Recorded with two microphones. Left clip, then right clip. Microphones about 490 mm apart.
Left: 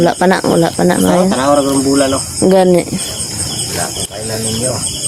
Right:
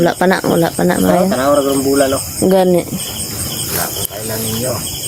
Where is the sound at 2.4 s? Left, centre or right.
Right.